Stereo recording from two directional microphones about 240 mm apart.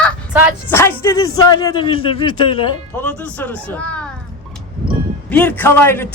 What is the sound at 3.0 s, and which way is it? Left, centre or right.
Speech, centre.